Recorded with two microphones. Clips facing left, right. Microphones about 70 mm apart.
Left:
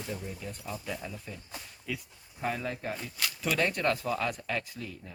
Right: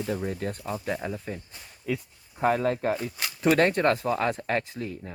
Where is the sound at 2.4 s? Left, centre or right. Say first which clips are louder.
Right 10 dB; right.